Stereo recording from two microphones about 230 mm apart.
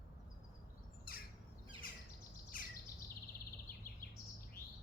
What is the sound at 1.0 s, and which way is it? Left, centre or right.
Bird, left.